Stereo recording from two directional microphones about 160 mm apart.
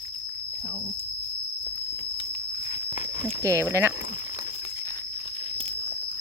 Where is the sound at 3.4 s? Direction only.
20° right (ahead or behind).